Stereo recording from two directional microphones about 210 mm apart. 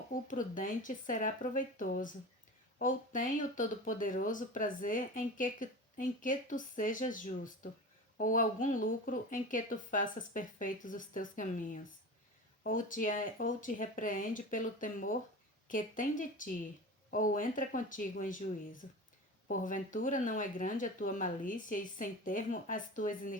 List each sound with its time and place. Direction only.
0.1 s speech: 40° left (ahead or behind)